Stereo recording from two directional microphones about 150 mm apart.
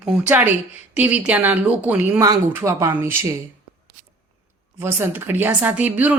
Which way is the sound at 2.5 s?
20° right (ahead or behind).